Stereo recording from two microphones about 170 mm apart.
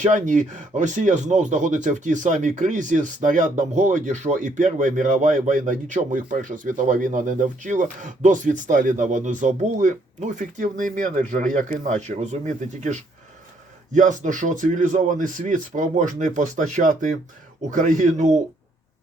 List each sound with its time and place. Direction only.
0.0 s speech: 45° right (ahead or behind)